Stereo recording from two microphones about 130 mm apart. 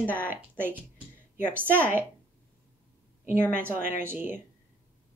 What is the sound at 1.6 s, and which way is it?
Speech, 10° left (ahead or behind).